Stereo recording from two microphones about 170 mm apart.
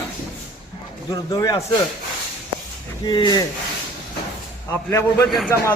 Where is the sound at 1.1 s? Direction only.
20° left (ahead or behind).